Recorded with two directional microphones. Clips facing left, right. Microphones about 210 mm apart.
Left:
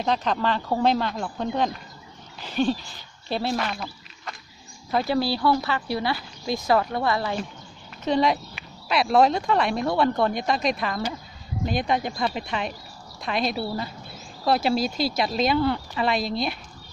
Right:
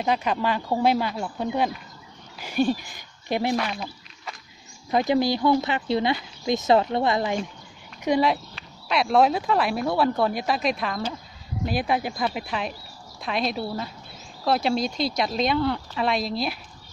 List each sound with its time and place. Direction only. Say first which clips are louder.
0.0 s speech: even; 10° right (ahead or behind)
3.5 s a sound: right 1 dB; centre (ahead or behind)
4.9 s speech: right 2 dB; 20° right (ahead or behind)
8.8 s speech: left 1 dB; centre (ahead or behind)